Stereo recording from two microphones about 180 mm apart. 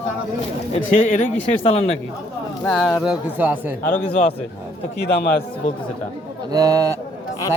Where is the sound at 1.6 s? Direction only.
35° left (ahead or behind).